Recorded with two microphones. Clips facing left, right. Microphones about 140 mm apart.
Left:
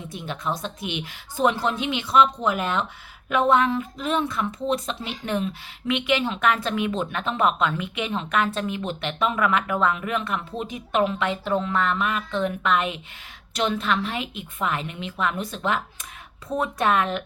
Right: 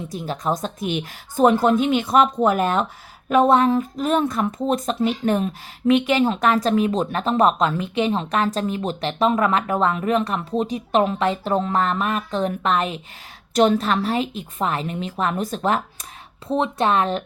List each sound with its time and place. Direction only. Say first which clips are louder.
0.1 s a woman's voice: right 5 dB; 35° right (ahead or behind)
16.5 s speech: right 3 dB; 30° right (ahead or behind)